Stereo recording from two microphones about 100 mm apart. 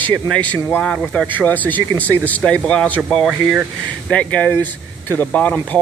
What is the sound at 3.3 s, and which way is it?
Speech, 10° right (ahead or behind).